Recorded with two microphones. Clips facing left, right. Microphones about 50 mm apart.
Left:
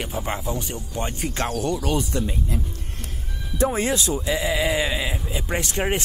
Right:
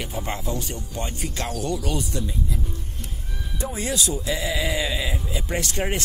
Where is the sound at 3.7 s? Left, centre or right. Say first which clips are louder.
Left 3 dB; left.